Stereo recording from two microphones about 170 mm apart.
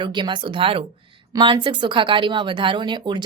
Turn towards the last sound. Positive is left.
turn(degrees=-25)  # may be behind; listen again after turning